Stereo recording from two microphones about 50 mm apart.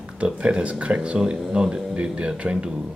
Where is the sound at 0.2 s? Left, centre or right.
Right.